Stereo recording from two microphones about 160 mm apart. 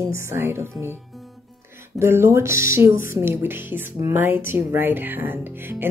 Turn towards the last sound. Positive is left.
turn(degrees=-15)  # may be behind; listen again after turning